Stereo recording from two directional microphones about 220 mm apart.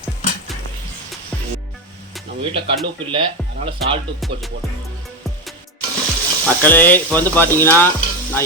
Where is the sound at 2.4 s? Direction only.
25° right (ahead or behind).